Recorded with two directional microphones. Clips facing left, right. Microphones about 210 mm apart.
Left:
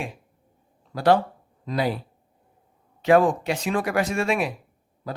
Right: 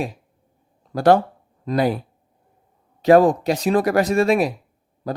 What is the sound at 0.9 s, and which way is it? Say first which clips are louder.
Speech: right 4 dB; 45° right (ahead or behind).